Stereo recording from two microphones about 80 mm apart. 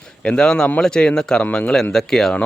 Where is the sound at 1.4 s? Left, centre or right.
Centre.